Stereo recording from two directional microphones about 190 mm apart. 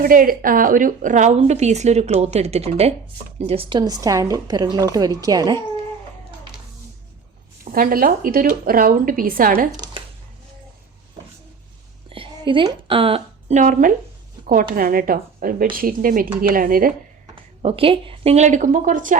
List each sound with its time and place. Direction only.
0.0 s a woman's voice: 50° right (ahead or behind); by 5.6 s 20° right (ahead or behind)
7.6 s a woman's voice: 50° right (ahead or behind)
9.7 s speech: 20° right (ahead or behind)
12.0 s a woman's voice: 30° right (ahead or behind); by 16.9 s 45° right (ahead or behind)
17.3 s a woman's voice: 30° right (ahead or behind)